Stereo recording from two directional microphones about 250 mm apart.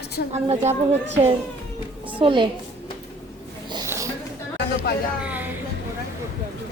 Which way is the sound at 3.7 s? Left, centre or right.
Centre.